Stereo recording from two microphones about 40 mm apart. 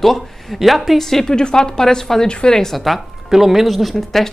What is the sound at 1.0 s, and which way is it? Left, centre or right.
Speech, centre.